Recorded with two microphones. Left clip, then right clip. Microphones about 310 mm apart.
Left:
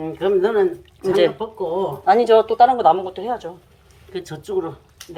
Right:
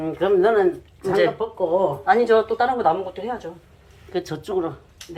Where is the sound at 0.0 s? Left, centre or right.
Centre.